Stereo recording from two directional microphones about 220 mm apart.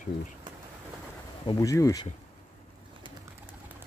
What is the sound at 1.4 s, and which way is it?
Speech, 15° left (ahead or behind).